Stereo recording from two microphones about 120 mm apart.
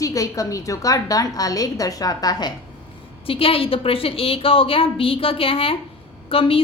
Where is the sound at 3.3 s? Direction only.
50° left (ahead or behind).